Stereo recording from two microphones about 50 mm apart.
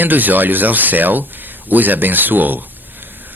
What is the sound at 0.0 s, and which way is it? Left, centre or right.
Speech, right.